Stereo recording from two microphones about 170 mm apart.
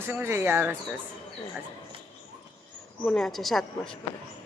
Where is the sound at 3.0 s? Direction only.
5° left (ahead or behind).